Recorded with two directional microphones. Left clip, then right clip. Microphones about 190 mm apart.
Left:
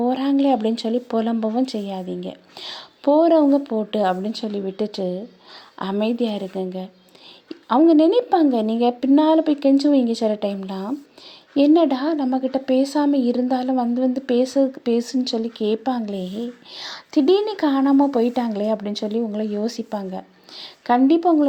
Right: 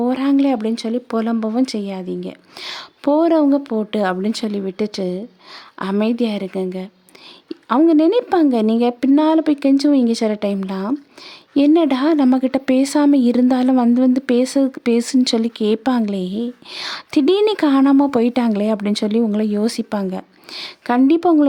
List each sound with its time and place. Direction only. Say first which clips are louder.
0.0 s speech: right 2 dB; 20° right (ahead or behind)